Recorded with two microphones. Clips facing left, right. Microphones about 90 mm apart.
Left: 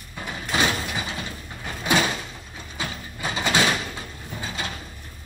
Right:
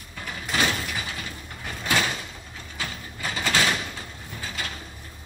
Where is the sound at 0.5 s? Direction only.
20° left (ahead or behind).